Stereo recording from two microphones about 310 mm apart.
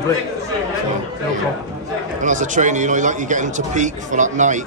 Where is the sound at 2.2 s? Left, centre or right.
Right.